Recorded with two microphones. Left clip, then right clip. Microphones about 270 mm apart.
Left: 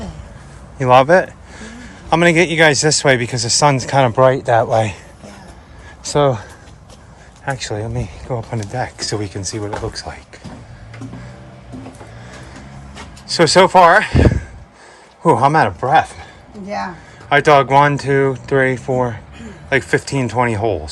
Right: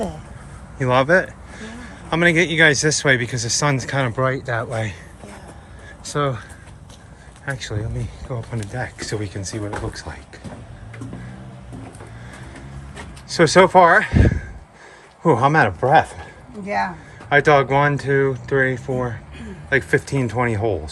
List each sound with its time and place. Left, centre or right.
0.8 s a man's voice: centre
6.0 s speech: left
7.4 s speech: centre
13.2 s speech: centre
17.2 s speech: centre